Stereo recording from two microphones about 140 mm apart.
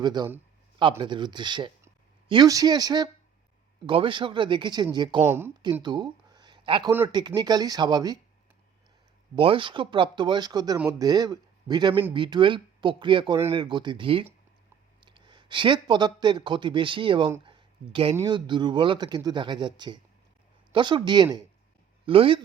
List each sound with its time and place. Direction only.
0.0 s a man's voice: 30° right (ahead or behind)
5.2 s speech: 15° right (ahead or behind)
5.8 s a sound: 30° right (ahead or behind)
7.1 s speech: 30° right (ahead or behind)
9.3 s a man's voice: 40° right (ahead or behind)
17.4 s a sound: 40° right (ahead or behind)
18.2 s speech: 35° right (ahead or behind)